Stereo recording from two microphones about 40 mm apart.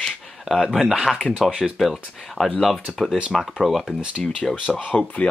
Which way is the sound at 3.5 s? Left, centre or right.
Centre.